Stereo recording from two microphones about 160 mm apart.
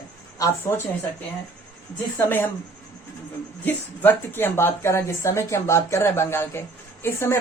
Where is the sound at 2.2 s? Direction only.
10° left (ahead or behind).